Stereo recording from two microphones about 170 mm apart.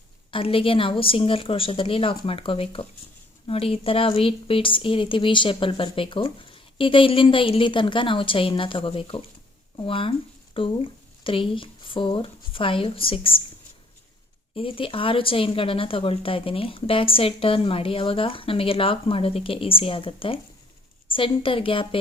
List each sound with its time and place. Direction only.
0.3 s a woman's voice: 30° left (ahead or behind)
14.5 s a woman's voice: 35° left (ahead or behind)